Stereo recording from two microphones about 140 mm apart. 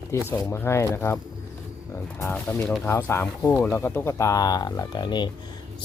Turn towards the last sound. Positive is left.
turn(degrees=30)  # may be behind; listen again after turning